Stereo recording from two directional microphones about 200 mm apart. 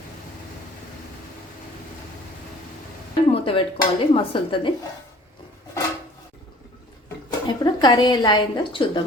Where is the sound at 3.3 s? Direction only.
30° left (ahead or behind).